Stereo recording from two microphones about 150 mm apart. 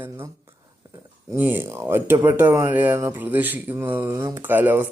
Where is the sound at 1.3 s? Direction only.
15° right (ahead or behind).